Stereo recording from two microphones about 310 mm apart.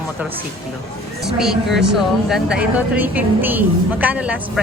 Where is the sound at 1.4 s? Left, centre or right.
Centre.